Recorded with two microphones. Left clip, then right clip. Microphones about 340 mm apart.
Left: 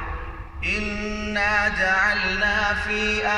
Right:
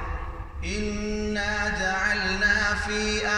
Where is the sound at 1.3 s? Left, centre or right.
Left.